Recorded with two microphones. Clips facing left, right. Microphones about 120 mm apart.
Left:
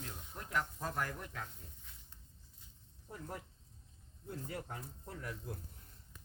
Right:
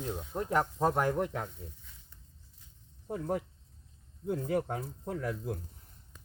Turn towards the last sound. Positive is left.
turn(degrees=-90)